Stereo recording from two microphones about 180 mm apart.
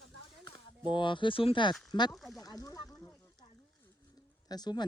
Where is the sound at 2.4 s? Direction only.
20° left (ahead or behind).